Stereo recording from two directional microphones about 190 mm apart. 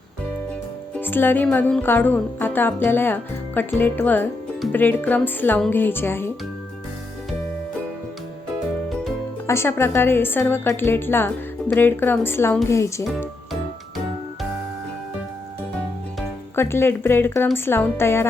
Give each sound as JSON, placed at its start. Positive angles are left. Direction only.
{"t": 0.9, "sound": "music", "side_deg": 10}
{"t": 9.5, "sound": "music", "side_deg": 15}
{"t": 13.1, "sound": "music", "side_deg": 0}
{"t": 16.6, "sound": "music", "side_deg": 10}